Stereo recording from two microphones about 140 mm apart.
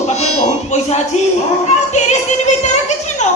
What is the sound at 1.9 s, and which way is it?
Music, 55° left (ahead or behind).